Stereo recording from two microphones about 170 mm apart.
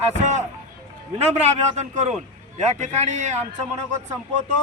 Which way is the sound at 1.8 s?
45° right (ahead or behind).